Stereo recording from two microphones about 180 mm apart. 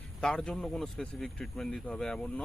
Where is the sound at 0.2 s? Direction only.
5° left (ahead or behind).